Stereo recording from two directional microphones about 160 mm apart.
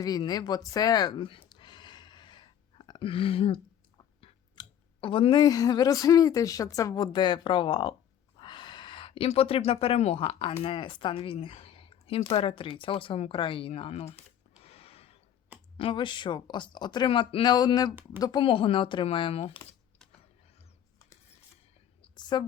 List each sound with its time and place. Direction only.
0.0 s speech: 25° left (ahead or behind)
14.6 s gasp: 40° left (ahead or behind)
15.8 s speech: 30° left (ahead or behind)
22.0 s a sound: 25° left (ahead or behind)